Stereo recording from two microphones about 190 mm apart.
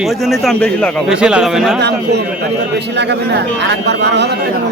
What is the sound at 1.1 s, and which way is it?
Speech, 5° right (ahead or behind).